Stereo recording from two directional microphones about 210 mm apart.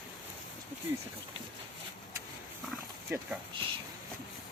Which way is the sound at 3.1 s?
10° right (ahead or behind).